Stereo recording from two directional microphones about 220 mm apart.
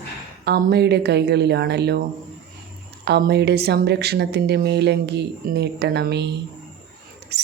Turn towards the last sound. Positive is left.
turn(degrees=-50)  # may be behind; listen again after turning